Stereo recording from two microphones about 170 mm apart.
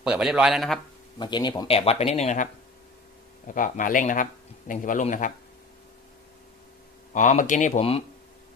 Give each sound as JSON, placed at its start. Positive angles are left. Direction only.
{"t": 0.0, "sound": "speech", "side_deg": -5}
{"t": 1.2, "sound": "speech", "side_deg": 25}
{"t": 7.1, "sound": "speech", "side_deg": 50}
{"t": 7.8, "sound": "speech", "side_deg": 35}